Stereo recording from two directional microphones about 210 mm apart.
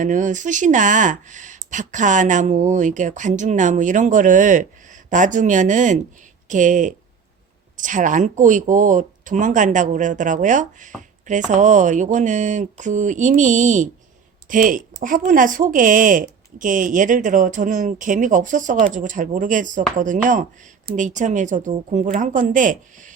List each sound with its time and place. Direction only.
0.0 s speech: 35° right (ahead or behind)